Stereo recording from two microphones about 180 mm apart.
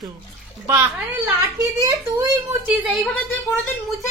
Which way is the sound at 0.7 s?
10° right (ahead or behind).